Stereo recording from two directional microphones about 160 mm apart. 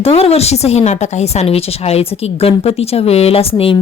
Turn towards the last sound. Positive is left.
turn(degrees=35)  # may be behind; listen again after turning